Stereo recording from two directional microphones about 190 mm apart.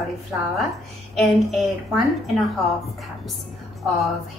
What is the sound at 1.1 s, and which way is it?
A woman's voice, centre (ahead or behind).